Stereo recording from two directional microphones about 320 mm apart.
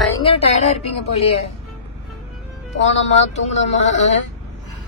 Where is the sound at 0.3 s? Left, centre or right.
Centre.